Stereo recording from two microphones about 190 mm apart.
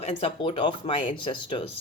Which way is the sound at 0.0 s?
35° left (ahead or behind).